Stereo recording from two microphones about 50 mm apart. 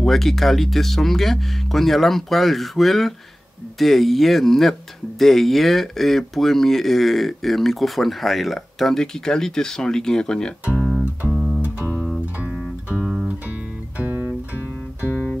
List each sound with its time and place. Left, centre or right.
0.0 s speech: centre
10.8 s music: centre
11.2 s music: right
13.0 s music: centre
14.0 s music: right